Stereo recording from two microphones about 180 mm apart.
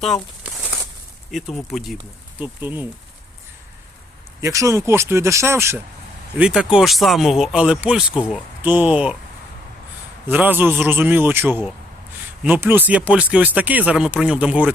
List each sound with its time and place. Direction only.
0.4 s a sound: 10° right (ahead or behind)
1.3 s speech: centre (ahead or behind)
4.4 s speech: 15° right (ahead or behind)
10.2 s speech: 10° right (ahead or behind)